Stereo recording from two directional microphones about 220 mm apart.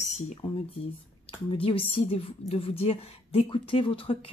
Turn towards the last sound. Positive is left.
turn(degrees=25)  # may be behind; listen again after turning